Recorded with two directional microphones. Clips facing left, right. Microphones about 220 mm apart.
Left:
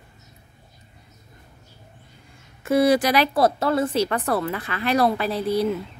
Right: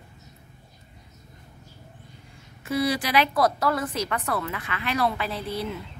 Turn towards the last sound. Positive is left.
turn(degrees=40)  # may be behind; listen again after turning